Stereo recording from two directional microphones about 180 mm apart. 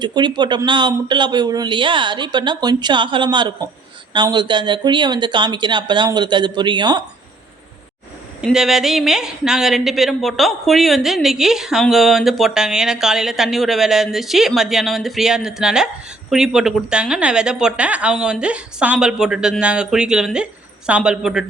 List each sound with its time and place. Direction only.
0.0 s speech: 25° right (ahead or behind)
8.4 s speech: centre (ahead or behind)